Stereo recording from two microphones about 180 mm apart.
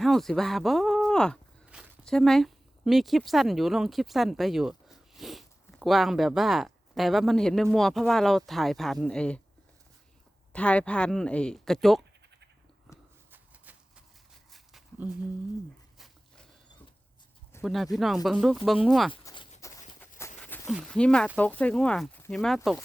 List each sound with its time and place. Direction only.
0.0 s speech: centre (ahead or behind)
10.5 s speech: 5° left (ahead or behind)
13.3 s shuffling cards: 10° right (ahead or behind)
14.5 s a sound: centre (ahead or behind)
17.6 s speech: centre (ahead or behind)
19.2 s a sound: 20° left (ahead or behind)
20.7 s speech: centre (ahead or behind)